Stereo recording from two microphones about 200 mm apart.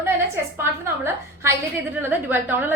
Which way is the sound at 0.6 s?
10° right (ahead or behind).